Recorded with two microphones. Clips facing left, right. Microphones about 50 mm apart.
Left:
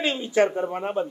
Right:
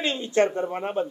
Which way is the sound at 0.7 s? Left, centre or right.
Centre.